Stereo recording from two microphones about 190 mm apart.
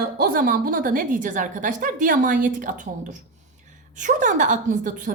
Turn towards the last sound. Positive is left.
turn(degrees=-40)  # may be behind; listen again after turning